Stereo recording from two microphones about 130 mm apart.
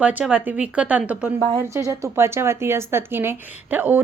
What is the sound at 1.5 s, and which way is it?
A woman's voice, 25° right (ahead or behind).